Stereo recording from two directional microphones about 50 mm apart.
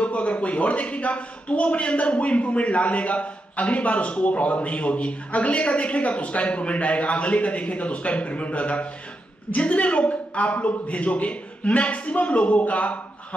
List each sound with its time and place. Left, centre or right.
0.0 s a man's voice: left